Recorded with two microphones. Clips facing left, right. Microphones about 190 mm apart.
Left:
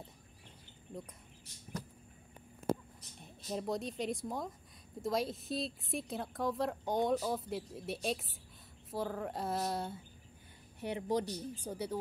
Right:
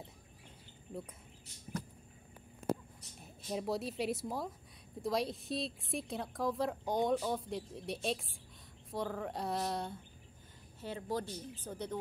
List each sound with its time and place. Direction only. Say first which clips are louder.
3.2 s a woman's voice: even; centre (ahead or behind)
10.8 s speech: left 4 dB; 15° left (ahead or behind)